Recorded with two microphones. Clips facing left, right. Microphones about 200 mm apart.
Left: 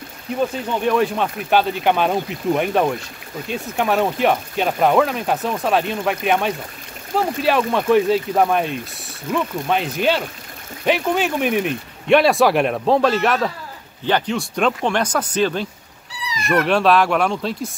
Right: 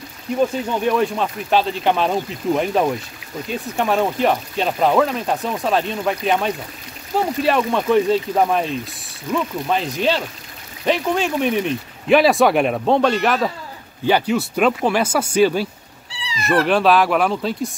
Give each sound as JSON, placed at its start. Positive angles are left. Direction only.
{"t": 0.8, "sound": "speech", "side_deg": 0}
{"t": 16.1, "sound": "cat", "side_deg": -30}
{"t": 16.6, "sound": "speech", "side_deg": 0}